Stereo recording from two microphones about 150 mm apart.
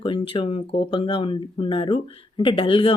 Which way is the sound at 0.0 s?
35° left (ahead or behind).